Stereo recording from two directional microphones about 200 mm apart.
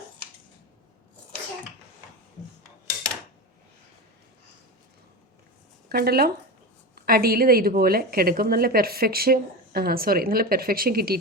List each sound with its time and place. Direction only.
5.9 s a woman's voice: 50° right (ahead or behind)